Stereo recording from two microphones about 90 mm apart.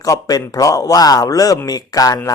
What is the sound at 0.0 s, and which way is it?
A man's voice, 40° left (ahead or behind).